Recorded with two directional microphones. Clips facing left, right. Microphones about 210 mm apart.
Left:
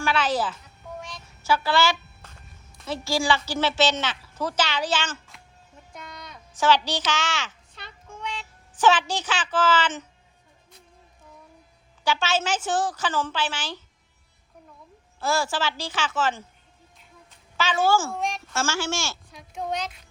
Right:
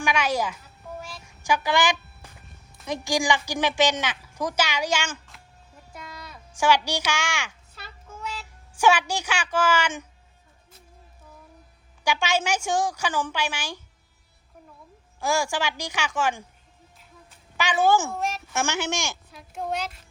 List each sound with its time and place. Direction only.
0.0 s a sound: 15° right (ahead or behind)
2.8 s speech: 15° right (ahead or behind)
5.9 s a sound: 5° right (ahead or behind)
12.0 s speech: 15° right (ahead or behind)
15.2 s speech: 15° right (ahead or behind)
17.6 s speech: 15° right (ahead or behind)
18.1 s speech: 5° right (ahead or behind)
18.5 s speech: 20° right (ahead or behind)
19.3 s speech: 5° right (ahead or behind)